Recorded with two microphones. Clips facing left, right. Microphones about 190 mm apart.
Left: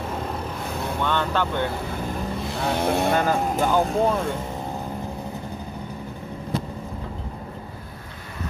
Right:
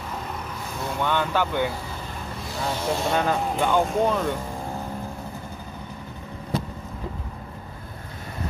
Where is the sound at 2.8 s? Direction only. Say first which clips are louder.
Left 5 dB; 60° left (ahead or behind).